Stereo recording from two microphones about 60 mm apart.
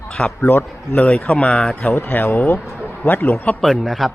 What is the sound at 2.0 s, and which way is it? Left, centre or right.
Speech, left.